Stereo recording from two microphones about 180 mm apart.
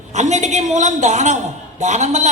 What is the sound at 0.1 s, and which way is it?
A woman's voice, 40° right (ahead or behind).